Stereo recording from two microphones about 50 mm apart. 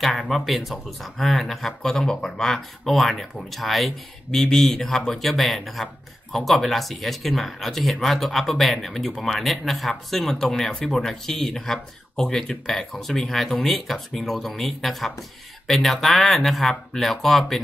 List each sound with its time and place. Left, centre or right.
0.2 s speech: centre
4.3 s speech: centre